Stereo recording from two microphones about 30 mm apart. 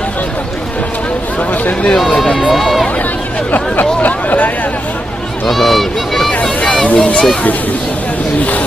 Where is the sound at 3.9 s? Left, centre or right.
Left.